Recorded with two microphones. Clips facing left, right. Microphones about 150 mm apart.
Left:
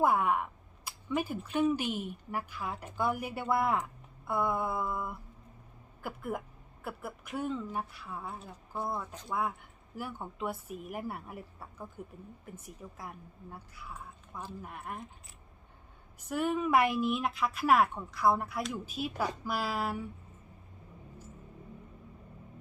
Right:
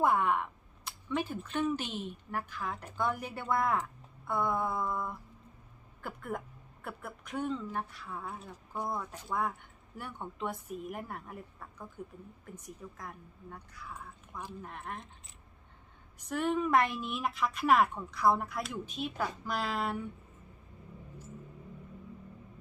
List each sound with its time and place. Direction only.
0.0 s speech: 5° left (ahead or behind)
14.6 s speech: 5° left (ahead or behind)
16.1 s speech: 5° left (ahead or behind)